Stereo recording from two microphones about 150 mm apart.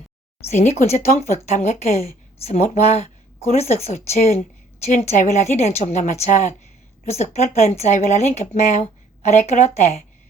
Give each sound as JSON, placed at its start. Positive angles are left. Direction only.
{"t": 0.5, "sound": "a woman's voice", "side_deg": 50}